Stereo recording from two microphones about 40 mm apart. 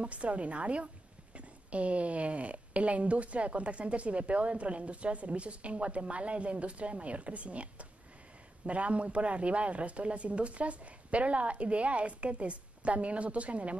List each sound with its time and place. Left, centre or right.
0.0 s speech: right